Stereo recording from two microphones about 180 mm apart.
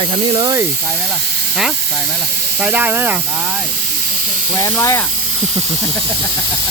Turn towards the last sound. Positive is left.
turn(degrees=15)  # may be behind; listen again after turning